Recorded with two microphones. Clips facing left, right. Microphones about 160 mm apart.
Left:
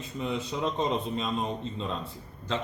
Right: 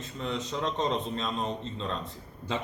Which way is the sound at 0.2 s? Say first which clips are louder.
Left 2 dB; 10° left (ahead or behind).